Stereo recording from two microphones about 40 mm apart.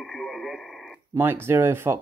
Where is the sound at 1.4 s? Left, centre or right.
Right.